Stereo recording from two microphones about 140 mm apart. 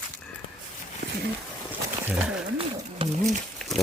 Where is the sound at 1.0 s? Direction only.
55° right (ahead or behind).